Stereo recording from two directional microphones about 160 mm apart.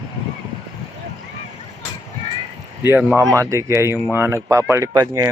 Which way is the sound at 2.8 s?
15° right (ahead or behind).